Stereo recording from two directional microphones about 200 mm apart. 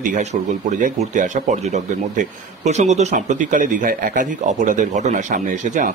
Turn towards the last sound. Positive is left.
turn(degrees=-40)  # may be behind; listen again after turning